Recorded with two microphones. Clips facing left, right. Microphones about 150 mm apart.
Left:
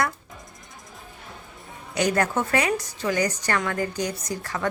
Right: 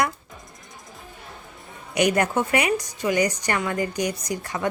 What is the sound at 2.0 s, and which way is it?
Speech, 15° right (ahead or behind).